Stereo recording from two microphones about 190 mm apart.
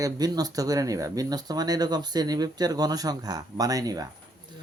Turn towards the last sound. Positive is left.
turn(degrees=-20)  # may be behind; listen again after turning